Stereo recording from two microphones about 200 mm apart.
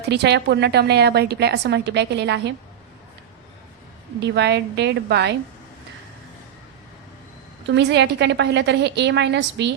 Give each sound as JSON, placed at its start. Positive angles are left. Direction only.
{"t": 0.1, "sound": "a woman's voice", "side_deg": -55}
{"t": 4.2, "sound": "a woman's voice", "side_deg": -60}
{"t": 7.7, "sound": "a woman's voice", "side_deg": -60}